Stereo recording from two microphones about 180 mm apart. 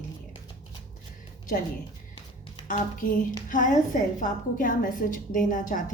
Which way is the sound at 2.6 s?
50° left (ahead or behind).